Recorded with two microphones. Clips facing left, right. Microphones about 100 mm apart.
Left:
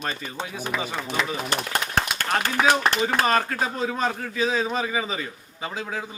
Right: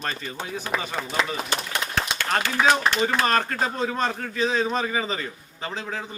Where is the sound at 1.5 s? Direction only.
40° left (ahead or behind).